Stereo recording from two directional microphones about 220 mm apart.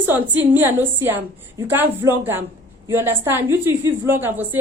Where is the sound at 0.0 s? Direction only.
10° right (ahead or behind).